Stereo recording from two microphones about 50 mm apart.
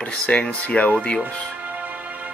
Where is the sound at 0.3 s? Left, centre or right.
Left.